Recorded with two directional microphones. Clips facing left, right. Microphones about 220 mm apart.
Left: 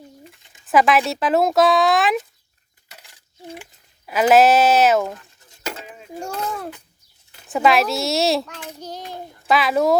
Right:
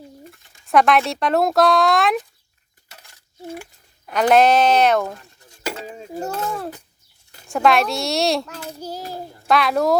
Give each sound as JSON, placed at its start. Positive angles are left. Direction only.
{"t": 0.6, "sound": "speech", "side_deg": 0}
{"t": 2.9, "sound": "coin", "side_deg": 15}
{"t": 4.1, "sound": "speech", "side_deg": 5}
{"t": 5.8, "sound": "dishes", "side_deg": -35}
{"t": 6.1, "sound": "speech", "side_deg": -5}
{"t": 8.8, "sound": "child singing", "side_deg": -10}
{"t": 9.0, "sound": "a child's voice", "side_deg": -35}
{"t": 9.5, "sound": "speech", "side_deg": 0}